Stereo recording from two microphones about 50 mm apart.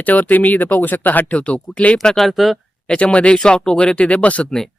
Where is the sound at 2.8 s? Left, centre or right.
Left.